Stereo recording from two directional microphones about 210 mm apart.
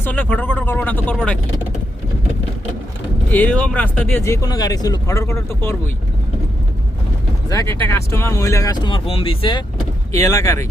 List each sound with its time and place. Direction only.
0.0 s speech: 10° left (ahead or behind)
3.3 s speech: 5° left (ahead or behind)
7.5 s speech: 15° left (ahead or behind)